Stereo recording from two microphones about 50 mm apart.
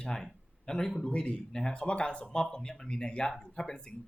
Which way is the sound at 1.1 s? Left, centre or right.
Left.